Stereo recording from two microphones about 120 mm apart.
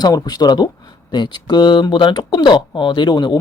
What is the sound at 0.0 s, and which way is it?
Speech, 35° left (ahead or behind).